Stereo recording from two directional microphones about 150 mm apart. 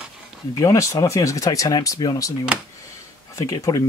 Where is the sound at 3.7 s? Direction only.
25° left (ahead or behind).